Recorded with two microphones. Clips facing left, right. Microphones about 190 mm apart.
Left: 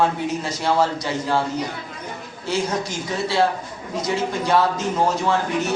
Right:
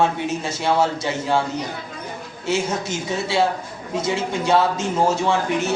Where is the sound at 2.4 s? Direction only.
25° right (ahead or behind).